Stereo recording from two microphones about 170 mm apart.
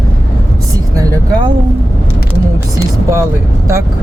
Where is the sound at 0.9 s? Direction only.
20° right (ahead or behind).